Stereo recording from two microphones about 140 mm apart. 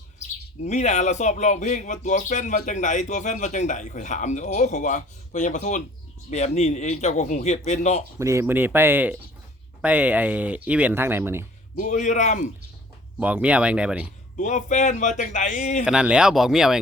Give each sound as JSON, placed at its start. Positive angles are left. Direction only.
{"t": 0.2, "sound": "speech", "side_deg": 60}
{"t": 8.2, "sound": "speech", "side_deg": -20}
{"t": 11.8, "sound": "speech", "side_deg": 60}
{"t": 13.1, "sound": "speech", "side_deg": -10}
{"t": 14.3, "sound": "speech", "side_deg": 60}
{"t": 15.8, "sound": "speech", "side_deg": -5}